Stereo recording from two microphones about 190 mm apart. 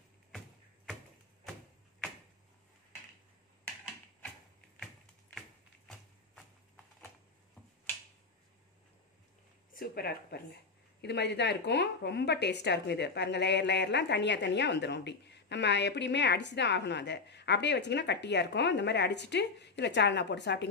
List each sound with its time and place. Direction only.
9.8 s speech: 55° left (ahead or behind)